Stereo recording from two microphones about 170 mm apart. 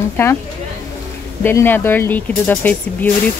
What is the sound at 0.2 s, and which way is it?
Speech, 15° left (ahead or behind).